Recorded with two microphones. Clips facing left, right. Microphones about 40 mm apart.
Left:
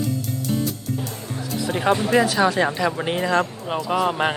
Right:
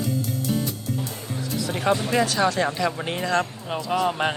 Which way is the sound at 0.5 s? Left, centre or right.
Centre.